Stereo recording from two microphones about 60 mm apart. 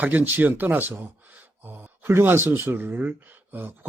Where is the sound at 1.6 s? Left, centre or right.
Right.